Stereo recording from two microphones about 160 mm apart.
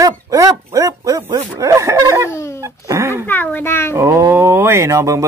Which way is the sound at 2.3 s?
15° left (ahead or behind).